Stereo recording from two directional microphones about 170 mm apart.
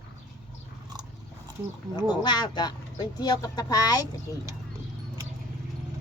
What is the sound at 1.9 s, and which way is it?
Speech, 25° left (ahead or behind).